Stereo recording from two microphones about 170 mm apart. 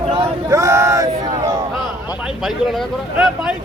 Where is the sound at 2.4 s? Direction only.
Centre (ahead or behind).